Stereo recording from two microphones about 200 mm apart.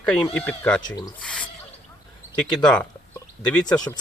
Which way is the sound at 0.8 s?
20° left (ahead or behind).